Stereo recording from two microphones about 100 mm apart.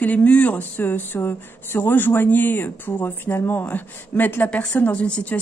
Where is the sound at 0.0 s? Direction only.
15° left (ahead or behind).